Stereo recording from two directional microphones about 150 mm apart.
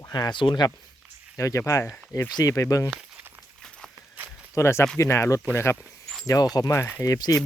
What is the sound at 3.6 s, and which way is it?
Walk, 5° left (ahead or behind).